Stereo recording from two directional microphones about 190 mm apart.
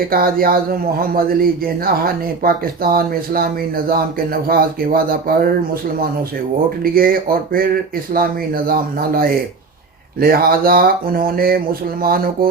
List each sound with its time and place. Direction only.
0.1 s speech: 50° right (ahead or behind)
4.4 s speech: 50° right (ahead or behind)
6.7 s speech: 50° right (ahead or behind)